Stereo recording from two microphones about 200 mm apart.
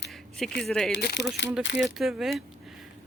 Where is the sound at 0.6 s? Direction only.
5° left (ahead or behind).